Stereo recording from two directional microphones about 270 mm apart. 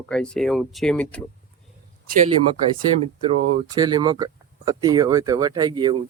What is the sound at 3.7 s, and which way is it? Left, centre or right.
Speech, centre.